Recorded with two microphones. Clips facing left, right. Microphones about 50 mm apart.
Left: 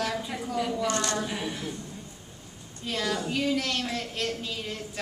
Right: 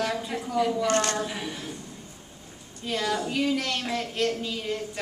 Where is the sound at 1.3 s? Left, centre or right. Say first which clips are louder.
Left 1 dB; centre.